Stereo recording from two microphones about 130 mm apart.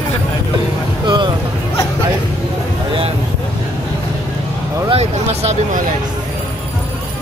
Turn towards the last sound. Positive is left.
turn(degrees=-55)  # may be behind; listen again after turning